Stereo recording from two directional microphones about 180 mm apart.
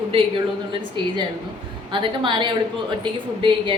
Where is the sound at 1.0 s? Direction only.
25° right (ahead or behind).